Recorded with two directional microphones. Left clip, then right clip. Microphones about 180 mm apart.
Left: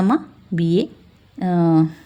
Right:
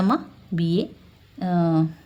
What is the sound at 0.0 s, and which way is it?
Speech, 20° left (ahead or behind).